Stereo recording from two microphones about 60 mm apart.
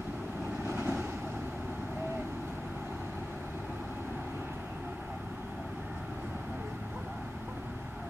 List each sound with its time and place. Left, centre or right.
0.7 s vehicle: right